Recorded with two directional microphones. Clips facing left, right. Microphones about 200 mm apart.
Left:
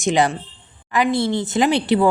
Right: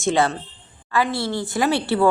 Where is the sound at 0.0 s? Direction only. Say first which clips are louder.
Left 2 dB; 15° left (ahead or behind).